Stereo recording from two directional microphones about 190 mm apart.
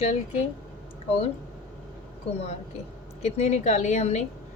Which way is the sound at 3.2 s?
35° left (ahead or behind).